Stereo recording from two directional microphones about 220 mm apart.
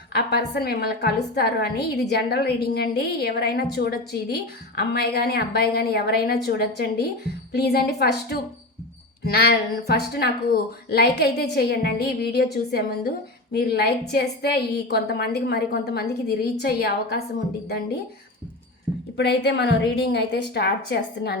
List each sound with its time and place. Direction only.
0.1 s a woman's voice: 45° left (ahead or behind)
13.5 s a woman's voice: 45° left (ahead or behind)
19.1 s a woman's voice: 50° left (ahead or behind)